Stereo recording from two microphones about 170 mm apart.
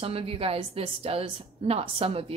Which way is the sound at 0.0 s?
35° right (ahead or behind).